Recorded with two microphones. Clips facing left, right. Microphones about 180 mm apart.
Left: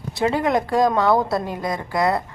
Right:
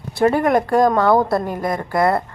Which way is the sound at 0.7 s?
55° right (ahead or behind).